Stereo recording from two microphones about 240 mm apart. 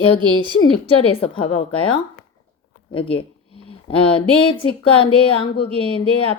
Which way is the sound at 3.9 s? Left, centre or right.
Left.